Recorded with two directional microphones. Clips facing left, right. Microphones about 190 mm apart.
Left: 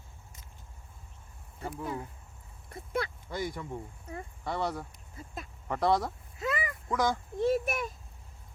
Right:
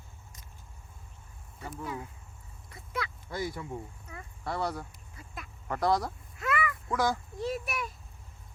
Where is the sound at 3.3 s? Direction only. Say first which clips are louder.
Right 1 dB; 5° right (ahead or behind).